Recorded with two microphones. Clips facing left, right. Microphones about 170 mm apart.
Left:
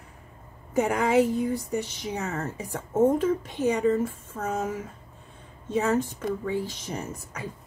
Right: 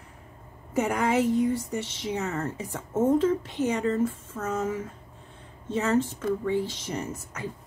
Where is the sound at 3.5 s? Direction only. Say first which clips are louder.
Left 3 dB; 10° left (ahead or behind).